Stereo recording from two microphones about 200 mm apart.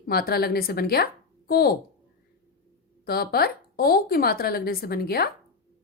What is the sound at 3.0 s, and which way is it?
A woman's voice, 50° left (ahead or behind).